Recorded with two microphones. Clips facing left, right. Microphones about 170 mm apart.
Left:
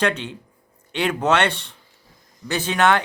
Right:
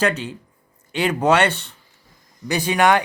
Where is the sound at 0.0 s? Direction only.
5° right (ahead or behind).